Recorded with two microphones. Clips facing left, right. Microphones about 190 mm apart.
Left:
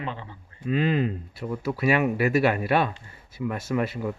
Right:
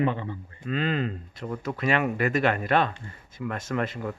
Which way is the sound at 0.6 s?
10° left (ahead or behind).